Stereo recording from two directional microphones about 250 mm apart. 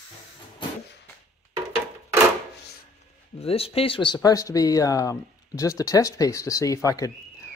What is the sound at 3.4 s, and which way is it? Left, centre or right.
Speech, left.